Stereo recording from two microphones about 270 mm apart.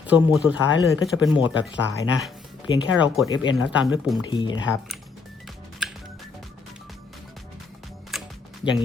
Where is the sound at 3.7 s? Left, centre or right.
Centre.